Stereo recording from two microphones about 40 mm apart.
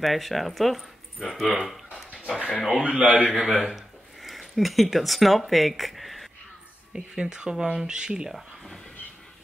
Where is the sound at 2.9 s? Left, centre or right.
Right.